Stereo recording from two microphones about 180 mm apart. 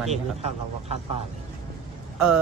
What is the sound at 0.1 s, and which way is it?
Speech, 35° right (ahead or behind).